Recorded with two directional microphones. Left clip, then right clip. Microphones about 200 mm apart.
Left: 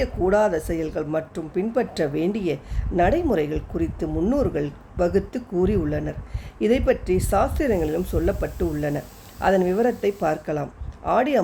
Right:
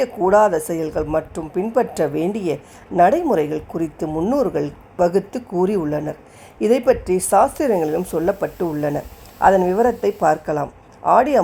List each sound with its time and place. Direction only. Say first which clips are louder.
0.3 s speech: right 6 dB; 5° right (ahead or behind)